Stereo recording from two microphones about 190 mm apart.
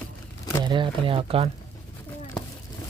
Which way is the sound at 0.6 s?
25° right (ahead or behind).